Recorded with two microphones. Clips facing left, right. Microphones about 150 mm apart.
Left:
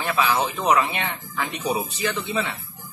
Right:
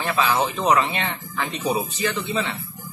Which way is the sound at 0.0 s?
15° left (ahead or behind).